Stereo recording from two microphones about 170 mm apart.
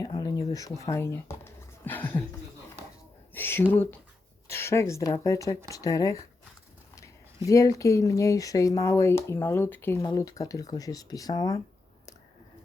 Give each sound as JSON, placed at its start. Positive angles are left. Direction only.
{"t": 0.0, "sound": "speech", "side_deg": 20}
{"t": 3.3, "sound": "speech", "side_deg": 15}
{"t": 7.4, "sound": "speech", "side_deg": 20}